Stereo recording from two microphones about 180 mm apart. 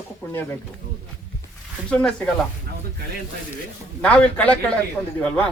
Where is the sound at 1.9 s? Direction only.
5° left (ahead or behind).